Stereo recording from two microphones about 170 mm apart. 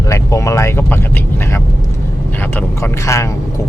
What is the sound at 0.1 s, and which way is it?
Vehicle, 20° left (ahead or behind).